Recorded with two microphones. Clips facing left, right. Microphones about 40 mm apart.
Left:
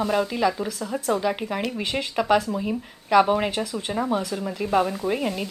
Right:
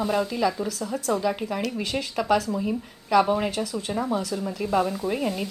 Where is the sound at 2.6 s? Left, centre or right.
Centre.